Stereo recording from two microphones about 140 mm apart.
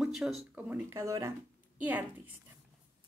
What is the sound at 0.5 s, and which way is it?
A woman's voice, 15° right (ahead or behind).